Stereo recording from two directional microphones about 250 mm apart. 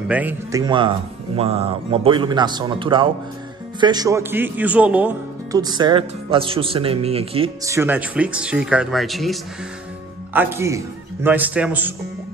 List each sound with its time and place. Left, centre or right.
0.1 s a man's voice: centre